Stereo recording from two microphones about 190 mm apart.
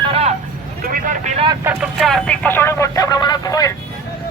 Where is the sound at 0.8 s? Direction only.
45° right (ahead or behind).